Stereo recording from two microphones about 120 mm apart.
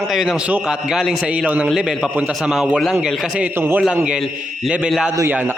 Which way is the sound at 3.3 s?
15° right (ahead or behind).